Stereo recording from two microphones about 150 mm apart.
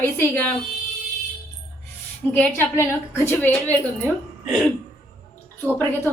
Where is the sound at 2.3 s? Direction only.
15° left (ahead or behind).